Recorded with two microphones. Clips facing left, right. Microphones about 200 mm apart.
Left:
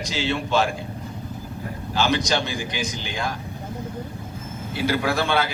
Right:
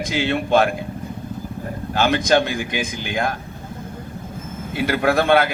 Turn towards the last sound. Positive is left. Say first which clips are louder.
# right 6 dB
turn(degrees=-55)  # may be behind; listen again after turning